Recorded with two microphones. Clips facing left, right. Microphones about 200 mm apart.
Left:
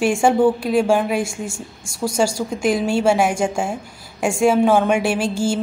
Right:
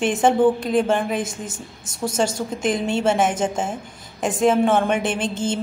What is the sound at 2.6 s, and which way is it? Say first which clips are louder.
A woman's voice: left 3 dB; 10° left (ahead or behind).